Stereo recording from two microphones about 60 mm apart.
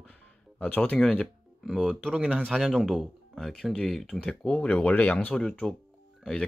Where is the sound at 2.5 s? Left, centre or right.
Centre.